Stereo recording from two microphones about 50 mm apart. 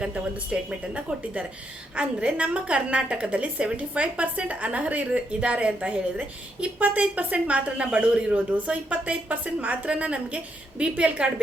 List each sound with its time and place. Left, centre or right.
0.0 s a woman's voice: centre